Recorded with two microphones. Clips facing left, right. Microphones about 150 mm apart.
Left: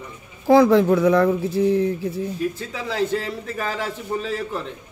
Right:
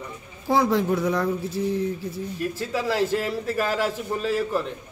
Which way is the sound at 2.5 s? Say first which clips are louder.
Right 2 dB; 5° right (ahead or behind).